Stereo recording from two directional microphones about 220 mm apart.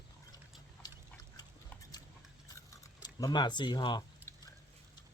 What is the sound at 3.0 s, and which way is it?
Speech, 20° left (ahead or behind).